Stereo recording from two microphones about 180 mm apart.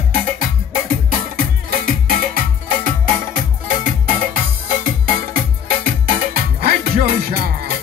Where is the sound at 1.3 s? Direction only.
55° right (ahead or behind).